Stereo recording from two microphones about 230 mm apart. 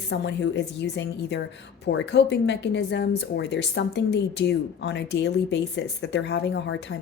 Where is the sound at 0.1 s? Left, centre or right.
Left.